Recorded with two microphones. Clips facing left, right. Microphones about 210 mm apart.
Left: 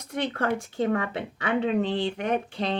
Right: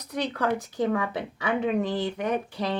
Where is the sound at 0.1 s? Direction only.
25° left (ahead or behind).